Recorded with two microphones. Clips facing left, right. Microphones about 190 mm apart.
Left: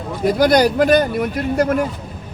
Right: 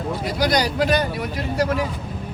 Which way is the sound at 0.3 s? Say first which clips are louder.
Left 9 dB; 50° left (ahead or behind).